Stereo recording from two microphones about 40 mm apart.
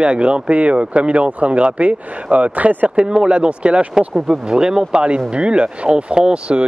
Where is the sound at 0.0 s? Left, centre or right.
Right.